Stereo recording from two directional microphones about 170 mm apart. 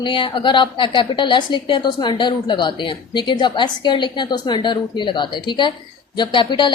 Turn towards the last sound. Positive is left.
turn(degrees=25)  # may be behind; listen again after turning